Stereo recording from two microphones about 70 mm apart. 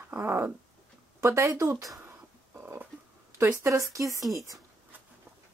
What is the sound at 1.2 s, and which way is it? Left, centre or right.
Speech, right.